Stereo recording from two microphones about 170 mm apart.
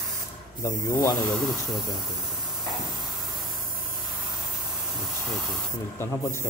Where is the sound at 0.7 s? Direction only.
20° left (ahead or behind).